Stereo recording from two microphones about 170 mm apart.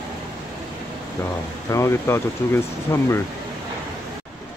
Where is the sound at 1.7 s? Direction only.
15° left (ahead or behind).